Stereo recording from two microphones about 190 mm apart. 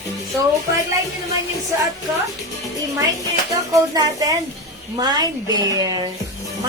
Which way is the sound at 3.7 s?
20° right (ahead or behind).